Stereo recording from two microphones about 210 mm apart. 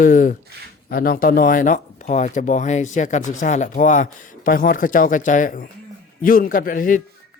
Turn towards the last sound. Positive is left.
turn(degrees=40)  # may be behind; listen again after turning